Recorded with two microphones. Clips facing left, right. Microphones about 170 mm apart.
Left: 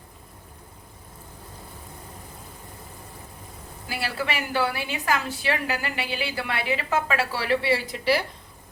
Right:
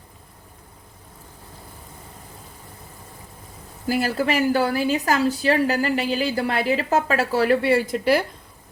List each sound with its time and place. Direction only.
3.8 s a woman's voice: 45° right (ahead or behind)